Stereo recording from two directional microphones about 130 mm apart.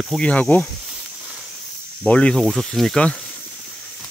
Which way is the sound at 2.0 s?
10° left (ahead or behind).